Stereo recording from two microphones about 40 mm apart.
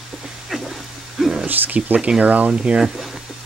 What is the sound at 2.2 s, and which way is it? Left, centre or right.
Speech, right.